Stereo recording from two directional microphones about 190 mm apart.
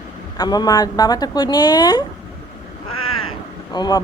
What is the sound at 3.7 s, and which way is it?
Speech, 20° left (ahead or behind).